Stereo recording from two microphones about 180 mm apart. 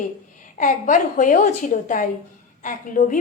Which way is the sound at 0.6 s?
45° left (ahead or behind).